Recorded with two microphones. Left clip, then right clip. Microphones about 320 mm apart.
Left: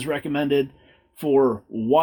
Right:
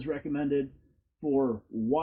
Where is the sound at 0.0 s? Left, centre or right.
Left.